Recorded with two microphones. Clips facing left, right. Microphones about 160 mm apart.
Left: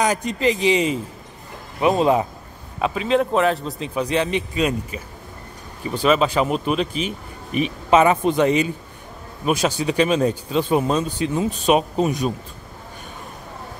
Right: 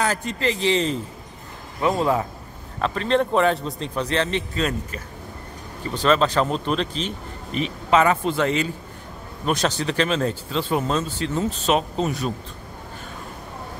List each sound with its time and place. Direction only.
0.0 s speech: 15° left (ahead or behind)
2.8 s speech: 5° left (ahead or behind)